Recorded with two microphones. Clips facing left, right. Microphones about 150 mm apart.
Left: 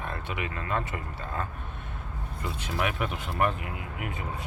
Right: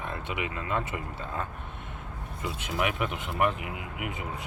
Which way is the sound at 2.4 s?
15° right (ahead or behind).